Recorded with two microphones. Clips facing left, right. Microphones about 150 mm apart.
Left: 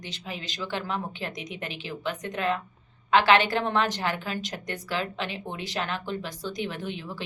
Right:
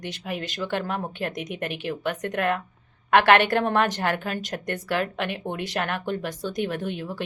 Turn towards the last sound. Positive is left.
turn(degrees=-50)  # may be behind; listen again after turning